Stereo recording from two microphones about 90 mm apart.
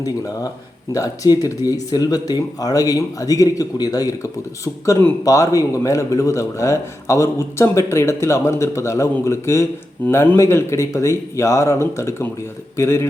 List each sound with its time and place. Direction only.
0.9 s a man's voice: 40° left (ahead or behind)
10.0 s speech: 15° left (ahead or behind)
10.3 s a man's voice: 30° left (ahead or behind)